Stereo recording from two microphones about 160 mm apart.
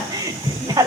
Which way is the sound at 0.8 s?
20° right (ahead or behind).